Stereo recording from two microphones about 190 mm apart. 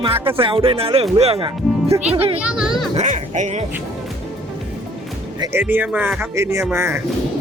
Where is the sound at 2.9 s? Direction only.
35° right (ahead or behind).